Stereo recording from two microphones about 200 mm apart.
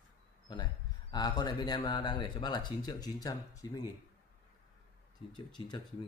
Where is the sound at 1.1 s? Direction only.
20° left (ahead or behind).